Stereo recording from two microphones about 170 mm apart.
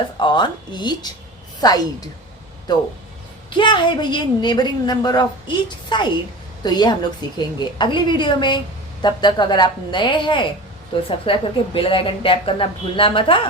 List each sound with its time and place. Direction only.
0.2 s a woman's voice: 25° left (ahead or behind)
3.6 s a woman's voice: 30° left (ahead or behind)